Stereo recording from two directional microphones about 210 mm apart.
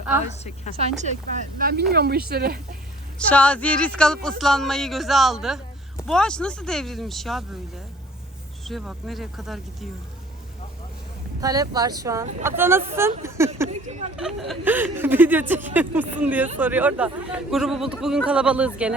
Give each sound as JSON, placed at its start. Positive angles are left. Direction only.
{"t": 0.8, "sound": "speech", "side_deg": -30}
{"t": 3.2, "sound": "a man's voice", "side_deg": 5}
{"t": 8.6, "sound": "a man's voice", "side_deg": 0}
{"t": 11.3, "sound": "speech", "side_deg": -15}
{"t": 14.2, "sound": "a man's voice", "side_deg": 0}